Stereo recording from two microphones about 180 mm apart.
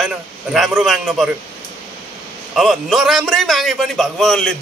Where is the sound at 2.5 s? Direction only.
Centre (ahead or behind).